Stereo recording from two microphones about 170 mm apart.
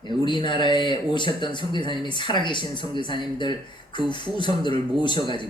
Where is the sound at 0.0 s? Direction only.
30° left (ahead or behind).